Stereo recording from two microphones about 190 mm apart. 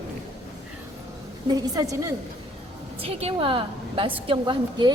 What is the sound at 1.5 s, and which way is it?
Speech, 20° right (ahead or behind).